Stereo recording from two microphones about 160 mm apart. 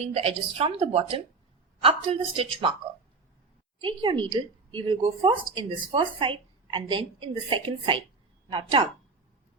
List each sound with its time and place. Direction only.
0.0 s a woman's voice: 40° right (ahead or behind)
3.8 s a woman's voice: 30° right (ahead or behind)